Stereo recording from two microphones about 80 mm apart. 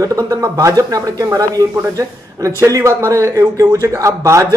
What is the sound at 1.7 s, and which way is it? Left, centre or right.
A man's voice, right.